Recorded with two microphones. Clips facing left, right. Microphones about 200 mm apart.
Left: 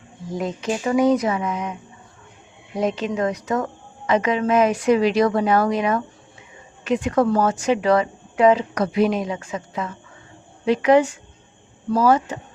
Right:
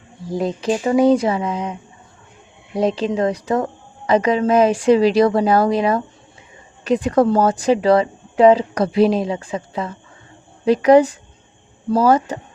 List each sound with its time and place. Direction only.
0.3 s a woman's voice: 35° right (ahead or behind)
2.7 s a woman's voice: 35° right (ahead or behind)